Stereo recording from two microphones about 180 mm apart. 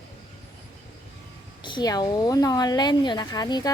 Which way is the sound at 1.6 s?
25° left (ahead or behind).